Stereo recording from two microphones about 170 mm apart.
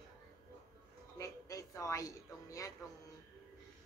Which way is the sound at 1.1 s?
20° left (ahead or behind).